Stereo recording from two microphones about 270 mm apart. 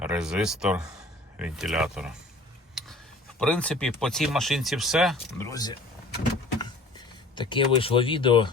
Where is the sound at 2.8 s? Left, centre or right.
Centre.